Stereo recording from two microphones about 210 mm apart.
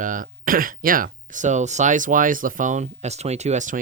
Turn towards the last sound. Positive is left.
turn(degrees=-35)  # may be behind; listen again after turning